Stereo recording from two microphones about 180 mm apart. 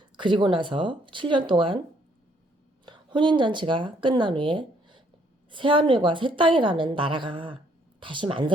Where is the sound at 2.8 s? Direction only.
25° right (ahead or behind).